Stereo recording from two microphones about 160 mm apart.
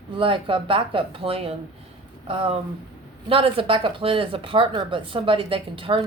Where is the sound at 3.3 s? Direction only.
35° right (ahead or behind).